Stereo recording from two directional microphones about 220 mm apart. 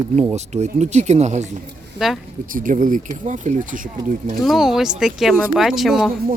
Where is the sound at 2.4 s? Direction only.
40° right (ahead or behind).